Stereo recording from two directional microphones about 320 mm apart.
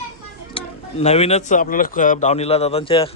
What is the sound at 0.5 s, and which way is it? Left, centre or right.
Speech, centre.